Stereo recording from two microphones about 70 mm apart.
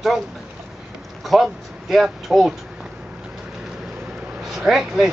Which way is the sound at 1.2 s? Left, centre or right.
Centre.